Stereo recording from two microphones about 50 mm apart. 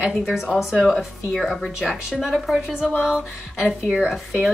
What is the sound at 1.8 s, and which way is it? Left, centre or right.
Speech, centre.